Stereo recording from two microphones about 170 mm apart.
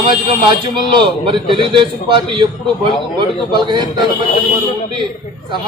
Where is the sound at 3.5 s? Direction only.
25° right (ahead or behind).